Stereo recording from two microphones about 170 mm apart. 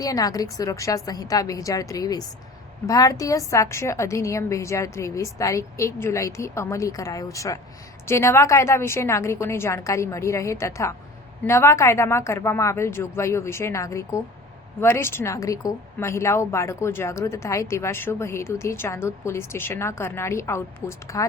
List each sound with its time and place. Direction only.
0.0 s a woman's voice: 20° left (ahead or behind)